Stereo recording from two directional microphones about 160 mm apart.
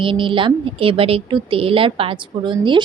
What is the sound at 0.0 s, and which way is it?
A woman's voice, 30° right (ahead or behind).